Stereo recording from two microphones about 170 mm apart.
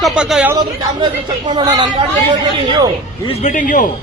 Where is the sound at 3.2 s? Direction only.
35° left (ahead or behind).